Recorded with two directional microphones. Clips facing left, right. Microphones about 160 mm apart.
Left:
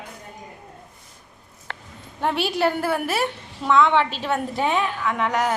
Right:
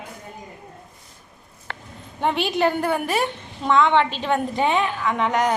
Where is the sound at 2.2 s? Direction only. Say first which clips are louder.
Right 1 dB; 5° left (ahead or behind).